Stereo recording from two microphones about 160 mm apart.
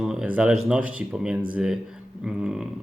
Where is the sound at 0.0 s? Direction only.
5° right (ahead or behind).